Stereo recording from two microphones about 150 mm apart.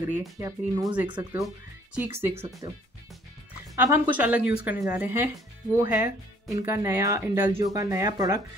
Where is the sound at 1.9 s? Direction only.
15° right (ahead or behind).